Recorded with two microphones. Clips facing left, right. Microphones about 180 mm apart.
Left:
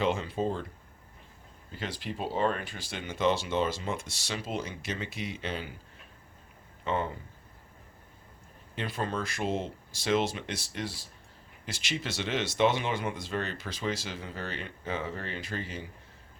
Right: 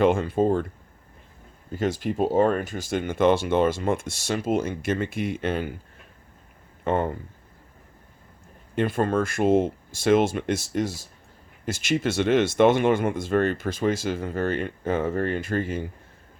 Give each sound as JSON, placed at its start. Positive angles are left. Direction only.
{"t": 0.0, "sound": "speech", "side_deg": -50}
{"t": 1.7, "sound": "speech", "side_deg": -45}
{"t": 6.8, "sound": "speech", "side_deg": -50}
{"t": 8.7, "sound": "speech", "side_deg": -50}